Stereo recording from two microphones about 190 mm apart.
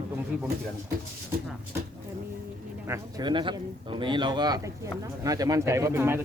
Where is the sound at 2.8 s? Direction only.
20° right (ahead or behind).